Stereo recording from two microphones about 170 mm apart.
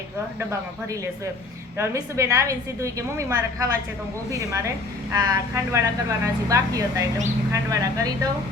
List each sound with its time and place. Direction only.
1.8 s a woman's voice: 15° right (ahead or behind)